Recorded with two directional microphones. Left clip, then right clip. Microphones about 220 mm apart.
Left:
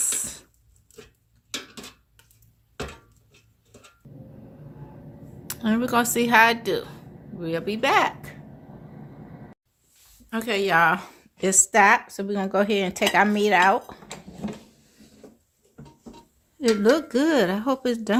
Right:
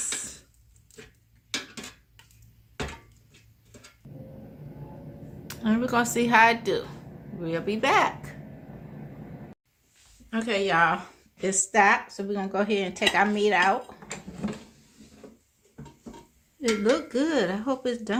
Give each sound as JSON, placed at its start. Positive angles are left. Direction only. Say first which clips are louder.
{"t": 1.5, "sound": "dishes", "louder": "right 1 dB", "side_deg": -5}
{"t": 4.0, "sound": "hammer", "louder": "right 1 dB", "side_deg": 0}
{"t": 5.5, "sound": "a woman's voice", "louder": "left 2 dB", "side_deg": 30}
{"t": 10.2, "sound": "a woman's voice", "louder": "left 2 dB", "side_deg": 50}
{"t": 14.4, "sound": "a sound", "louder": "even", "side_deg": 0}
{"t": 16.9, "sound": "a woman's voice", "louder": "left 4 dB", "side_deg": 45}